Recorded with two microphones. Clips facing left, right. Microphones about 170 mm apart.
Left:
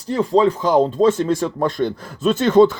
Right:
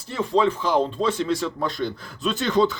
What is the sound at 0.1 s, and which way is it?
Speech, 40° left (ahead or behind).